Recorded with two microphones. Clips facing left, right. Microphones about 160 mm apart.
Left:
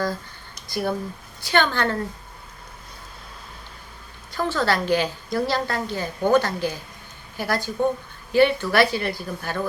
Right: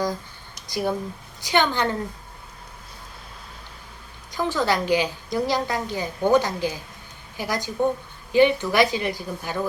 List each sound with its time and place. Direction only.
0.7 s a woman's voice: 15° right (ahead or behind)
4.3 s a woman's voice: 15° right (ahead or behind)